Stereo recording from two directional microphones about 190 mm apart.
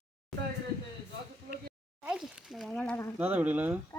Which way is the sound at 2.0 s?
5° right (ahead or behind).